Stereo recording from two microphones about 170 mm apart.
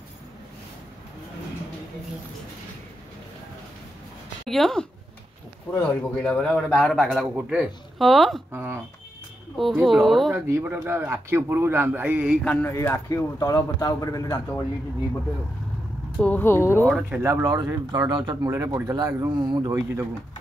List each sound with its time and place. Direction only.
4.5 s a man's voice: centre (ahead or behind)
8.5 s a man's voice: 15° right (ahead or behind)
9.6 s a man's voice: centre (ahead or behind)
10.3 s a man's voice: 10° right (ahead or behind)
12.4 s speech: 10° left (ahead or behind)
16.2 s speech: 10° left (ahead or behind)
17.1 s speech: 15° right (ahead or behind)